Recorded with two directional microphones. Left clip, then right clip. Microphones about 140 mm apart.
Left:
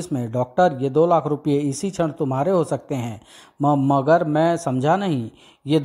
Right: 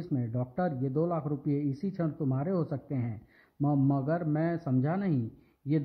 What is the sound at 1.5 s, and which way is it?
Speech, 60° left (ahead or behind).